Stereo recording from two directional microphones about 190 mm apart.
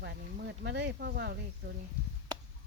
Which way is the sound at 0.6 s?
65° right (ahead or behind).